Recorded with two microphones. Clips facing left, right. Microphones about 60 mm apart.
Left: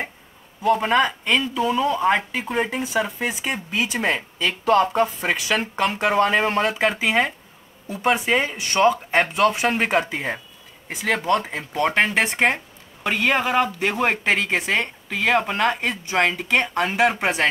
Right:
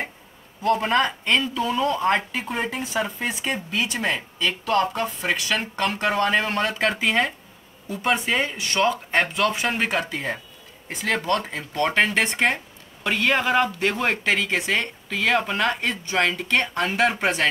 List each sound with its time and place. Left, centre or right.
0.6 s speech: centre